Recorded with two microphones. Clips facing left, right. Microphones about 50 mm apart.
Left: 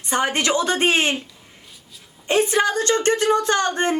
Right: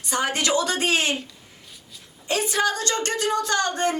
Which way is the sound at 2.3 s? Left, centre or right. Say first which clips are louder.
Left 4 dB; left.